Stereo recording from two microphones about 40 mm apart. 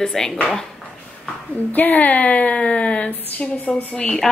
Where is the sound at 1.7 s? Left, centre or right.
Left.